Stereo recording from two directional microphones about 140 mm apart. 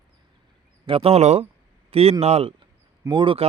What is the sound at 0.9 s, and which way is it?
A man's voice, 45° right (ahead or behind).